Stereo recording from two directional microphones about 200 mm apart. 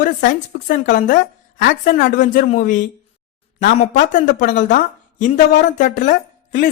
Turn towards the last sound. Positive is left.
turn(degrees=40)  # may be behind; listen again after turning